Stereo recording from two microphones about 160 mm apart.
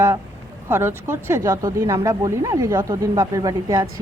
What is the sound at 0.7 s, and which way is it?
Speech, 15° right (ahead or behind).